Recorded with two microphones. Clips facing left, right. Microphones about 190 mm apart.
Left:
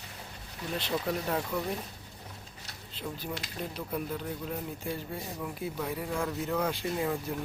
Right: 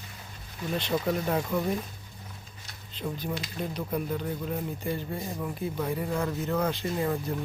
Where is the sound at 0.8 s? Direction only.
Centre (ahead or behind).